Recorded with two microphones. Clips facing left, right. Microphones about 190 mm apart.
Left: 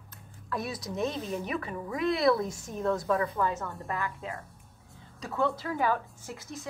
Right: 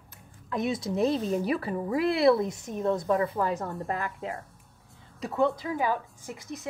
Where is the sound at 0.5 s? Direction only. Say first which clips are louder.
Right 6 dB; 25° right (ahead or behind).